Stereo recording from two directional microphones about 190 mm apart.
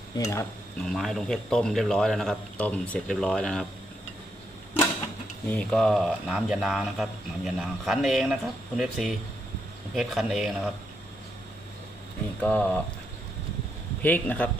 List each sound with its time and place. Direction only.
0.2 s a man's voice: 15° left (ahead or behind)
0.9 s speech: centre (ahead or behind)
5.5 s speech: 5° left (ahead or behind)
12.4 s a man's voice: 5° left (ahead or behind)
14.0 s a man's voice: 10° left (ahead or behind)